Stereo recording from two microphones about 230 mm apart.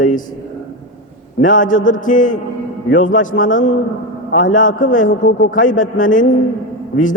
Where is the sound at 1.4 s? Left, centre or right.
Left.